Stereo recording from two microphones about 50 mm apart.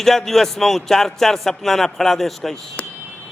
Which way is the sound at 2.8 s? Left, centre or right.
Left.